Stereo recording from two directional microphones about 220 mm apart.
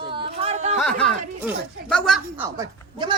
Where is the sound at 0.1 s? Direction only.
25° right (ahead or behind).